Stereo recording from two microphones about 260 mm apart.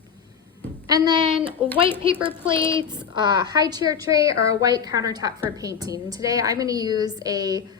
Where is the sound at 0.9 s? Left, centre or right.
Centre.